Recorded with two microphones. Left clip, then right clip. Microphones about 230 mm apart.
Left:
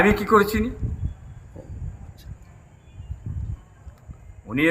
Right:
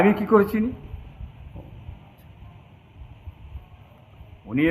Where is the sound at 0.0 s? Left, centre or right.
Centre.